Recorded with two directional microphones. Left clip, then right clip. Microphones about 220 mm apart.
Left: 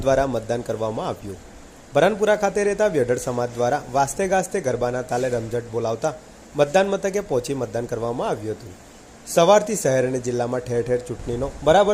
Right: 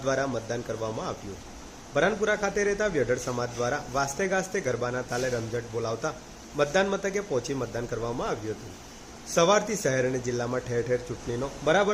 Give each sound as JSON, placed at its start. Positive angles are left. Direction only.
{"t": 0.0, "sound": "a man's voice", "side_deg": 25}